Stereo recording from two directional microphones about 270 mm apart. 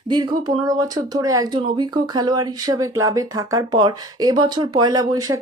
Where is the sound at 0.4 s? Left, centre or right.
Centre.